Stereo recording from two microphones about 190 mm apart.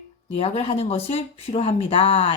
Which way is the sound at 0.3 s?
30° left (ahead or behind).